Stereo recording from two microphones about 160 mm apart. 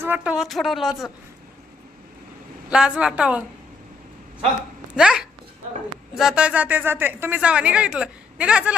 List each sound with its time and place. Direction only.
0.0 s speech: 10° right (ahead or behind)
2.6 s speech: 5° right (ahead or behind)
4.9 s speech: 5° right (ahead or behind)